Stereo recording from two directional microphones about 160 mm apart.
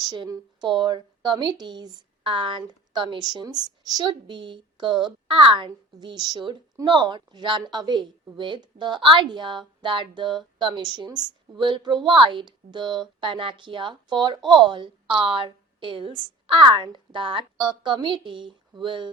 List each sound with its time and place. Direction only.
0.1 s a woman's voice: 25° right (ahead or behind)